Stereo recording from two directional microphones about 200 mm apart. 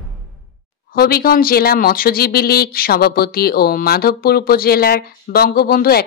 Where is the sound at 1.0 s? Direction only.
50° left (ahead or behind).